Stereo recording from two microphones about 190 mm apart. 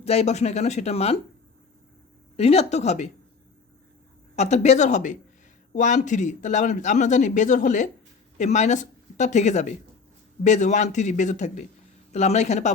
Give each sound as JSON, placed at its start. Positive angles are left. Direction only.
{"t": 0.0, "sound": "speech", "side_deg": 35}
{"t": 2.3, "sound": "speech", "side_deg": 35}
{"t": 4.4, "sound": "a woman's voice", "side_deg": 35}